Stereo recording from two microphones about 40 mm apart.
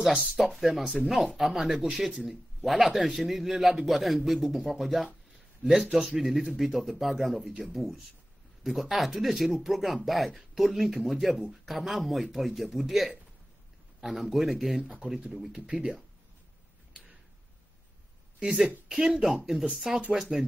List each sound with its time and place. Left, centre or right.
0.4 s a man's voice: centre
14.8 s speech: right
18.4 s speech: centre